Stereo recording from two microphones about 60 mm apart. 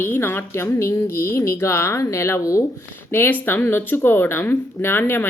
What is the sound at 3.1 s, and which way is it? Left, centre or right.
A woman's voice, left.